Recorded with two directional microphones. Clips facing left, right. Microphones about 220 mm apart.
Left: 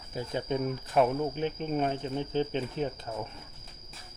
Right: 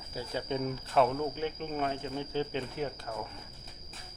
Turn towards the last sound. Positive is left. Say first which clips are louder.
# left 3 dB
turn(degrees=20)  # may be behind; listen again after turning